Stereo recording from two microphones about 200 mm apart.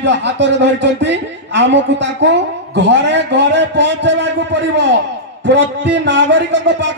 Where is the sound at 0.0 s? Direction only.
60° right (ahead or behind).